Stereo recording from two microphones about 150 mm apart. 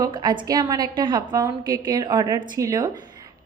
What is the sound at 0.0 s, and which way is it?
A woman's voice, 30° right (ahead or behind).